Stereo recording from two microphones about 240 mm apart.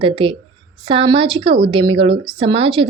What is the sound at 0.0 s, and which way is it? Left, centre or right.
A woman's voice, right.